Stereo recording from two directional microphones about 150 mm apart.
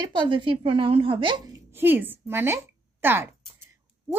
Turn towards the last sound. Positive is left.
turn(degrees=-15)  # may be behind; listen again after turning